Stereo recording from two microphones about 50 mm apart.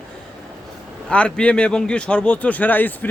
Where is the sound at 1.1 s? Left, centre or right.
Left.